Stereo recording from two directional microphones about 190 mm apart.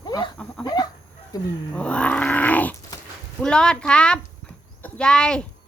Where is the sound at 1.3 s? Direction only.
10° left (ahead or behind).